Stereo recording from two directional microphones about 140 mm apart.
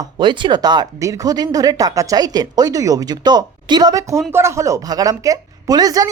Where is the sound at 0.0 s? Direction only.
35° right (ahead or behind).